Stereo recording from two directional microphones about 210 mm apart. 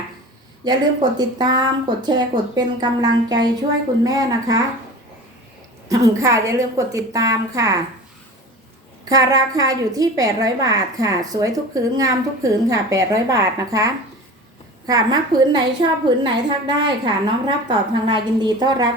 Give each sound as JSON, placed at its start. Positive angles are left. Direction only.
{"t": 0.6, "sound": "a woman's voice", "side_deg": -20}
{"t": 5.9, "sound": "a woman's voice", "side_deg": -15}
{"t": 9.0, "sound": "a woman's voice", "side_deg": -15}